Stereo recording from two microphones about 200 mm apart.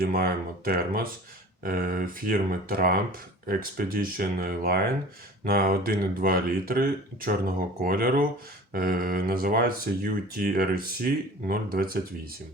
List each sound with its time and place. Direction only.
0.0 s speech: 50° right (ahead or behind)